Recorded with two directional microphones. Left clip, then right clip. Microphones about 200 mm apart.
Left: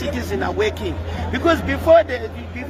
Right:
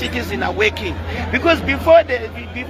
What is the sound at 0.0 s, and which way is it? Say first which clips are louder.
Speech: right 2 dB; 10° left (ahead or behind).